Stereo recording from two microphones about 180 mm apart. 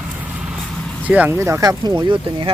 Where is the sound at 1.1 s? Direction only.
10° right (ahead or behind); by 2.5 s 30° right (ahead or behind).